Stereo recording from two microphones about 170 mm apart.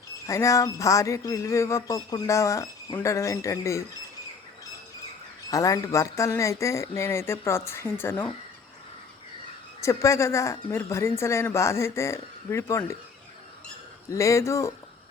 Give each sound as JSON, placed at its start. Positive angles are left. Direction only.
{"t": 0.3, "sound": "speech", "side_deg": 20}
{"t": 5.5, "sound": "speech", "side_deg": 20}
{"t": 9.8, "sound": "speech", "side_deg": 20}
{"t": 14.1, "sound": "speech", "side_deg": 20}